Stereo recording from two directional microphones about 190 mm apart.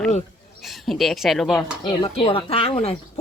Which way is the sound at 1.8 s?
30° left (ahead or behind).